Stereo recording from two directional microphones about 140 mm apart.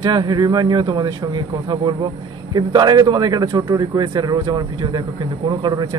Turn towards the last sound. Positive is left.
turn(degrees=-30)  # may be behind; listen again after turning